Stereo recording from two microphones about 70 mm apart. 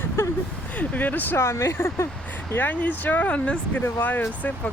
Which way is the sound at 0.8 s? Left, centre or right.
Left.